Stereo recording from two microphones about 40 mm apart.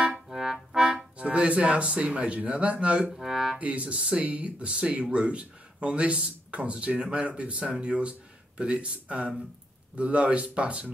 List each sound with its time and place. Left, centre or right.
0.3 s music: centre
1.3 s speech: right
3.1 s music: centre
3.5 s a man's voice: right